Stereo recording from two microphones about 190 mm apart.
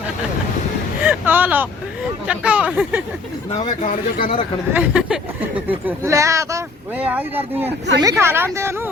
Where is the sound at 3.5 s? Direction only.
35° left (ahead or behind).